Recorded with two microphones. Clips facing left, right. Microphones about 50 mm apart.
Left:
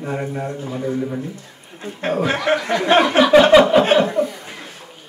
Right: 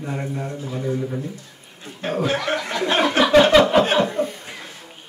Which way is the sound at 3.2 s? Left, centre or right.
Centre.